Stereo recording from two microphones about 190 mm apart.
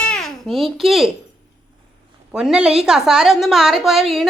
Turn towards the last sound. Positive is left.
turn(degrees=0)  # may be behind; listen again after turning